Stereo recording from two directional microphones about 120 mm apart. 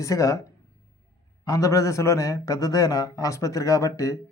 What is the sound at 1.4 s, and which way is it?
A man's voice, 30° left (ahead or behind).